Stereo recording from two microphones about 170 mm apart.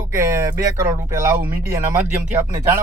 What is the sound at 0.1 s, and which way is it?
Speech, 15° right (ahead or behind).